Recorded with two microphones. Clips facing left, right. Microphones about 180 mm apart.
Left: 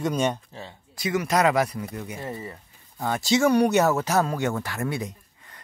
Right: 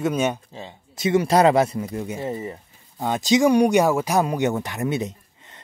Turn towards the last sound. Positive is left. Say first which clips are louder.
# right 4 dB
turn(degrees=-20)  # may be behind; listen again after turning